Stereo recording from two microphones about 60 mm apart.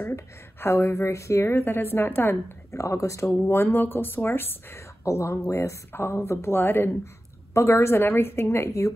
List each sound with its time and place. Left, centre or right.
0.1 s a woman's voice: left
2.7 s speech: left
3.4 s a woman's voice: left
7.5 s a woman's voice: left